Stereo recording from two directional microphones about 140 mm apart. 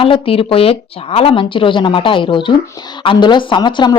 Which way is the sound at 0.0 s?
40° left (ahead or behind).